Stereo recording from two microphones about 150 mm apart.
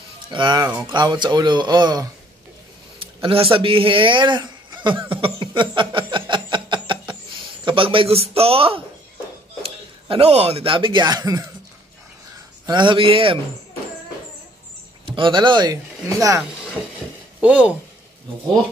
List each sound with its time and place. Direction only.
0.3 s a man's voice: 30° right (ahead or behind)
5.1 s a sound: 35° right (ahead or behind)
7.6 s a man's voice: 35° right (ahead or behind)
12.6 s a man's voice: 30° right (ahead or behind)
15.0 s speech: 35° right (ahead or behind)
17.4 s speech: 10° right (ahead or behind)